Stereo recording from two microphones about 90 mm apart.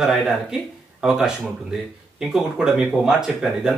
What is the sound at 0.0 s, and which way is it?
Speech, 5° right (ahead or behind).